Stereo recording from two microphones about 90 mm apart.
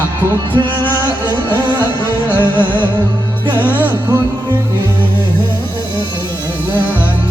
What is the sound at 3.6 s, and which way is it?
Music, 20° right (ahead or behind).